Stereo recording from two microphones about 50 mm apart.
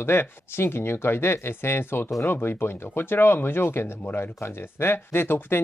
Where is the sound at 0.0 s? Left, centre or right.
Left.